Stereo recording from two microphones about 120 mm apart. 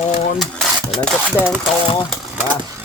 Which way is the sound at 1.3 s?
10° right (ahead or behind).